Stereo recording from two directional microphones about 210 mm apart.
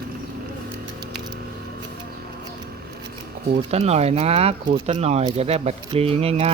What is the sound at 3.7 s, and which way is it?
Speech, 30° right (ahead or behind).